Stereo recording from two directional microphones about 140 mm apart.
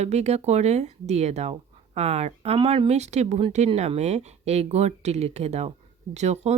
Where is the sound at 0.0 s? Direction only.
50° right (ahead or behind).